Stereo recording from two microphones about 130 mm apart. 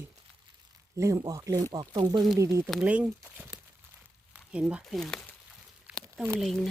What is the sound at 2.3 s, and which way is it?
Speech, 25° right (ahead or behind).